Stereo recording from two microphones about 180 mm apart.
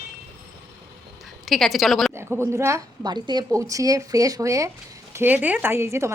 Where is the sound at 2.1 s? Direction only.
15° right (ahead or behind).